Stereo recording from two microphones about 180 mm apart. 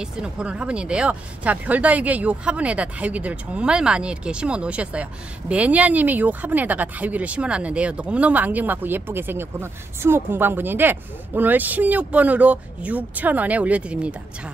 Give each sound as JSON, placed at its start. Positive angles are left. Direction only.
{"t": 0.0, "sound": "speech", "side_deg": -5}